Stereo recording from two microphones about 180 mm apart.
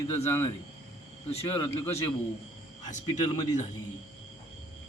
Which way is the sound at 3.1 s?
20° left (ahead or behind).